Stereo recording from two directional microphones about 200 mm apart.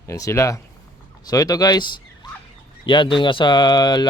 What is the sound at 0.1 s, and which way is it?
Speech, 15° left (ahead or behind).